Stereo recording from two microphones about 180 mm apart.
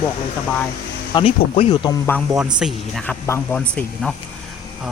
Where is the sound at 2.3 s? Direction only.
5° right (ahead or behind).